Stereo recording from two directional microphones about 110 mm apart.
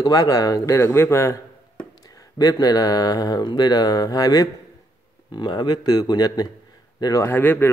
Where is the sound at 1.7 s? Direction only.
35° left (ahead or behind).